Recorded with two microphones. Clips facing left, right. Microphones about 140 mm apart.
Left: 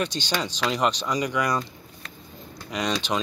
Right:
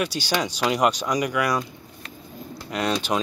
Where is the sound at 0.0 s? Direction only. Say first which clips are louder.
Right 2 dB; 10° right (ahead or behind).